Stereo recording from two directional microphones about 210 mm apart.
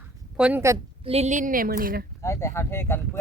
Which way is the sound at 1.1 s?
30° right (ahead or behind).